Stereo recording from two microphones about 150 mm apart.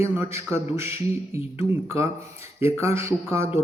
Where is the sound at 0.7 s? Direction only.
15° right (ahead or behind).